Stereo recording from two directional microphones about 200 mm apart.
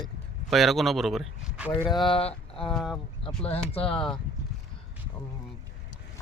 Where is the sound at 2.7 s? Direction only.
Centre (ahead or behind).